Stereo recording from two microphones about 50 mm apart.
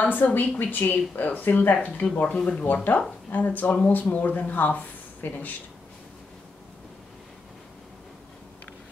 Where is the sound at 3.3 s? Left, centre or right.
Left.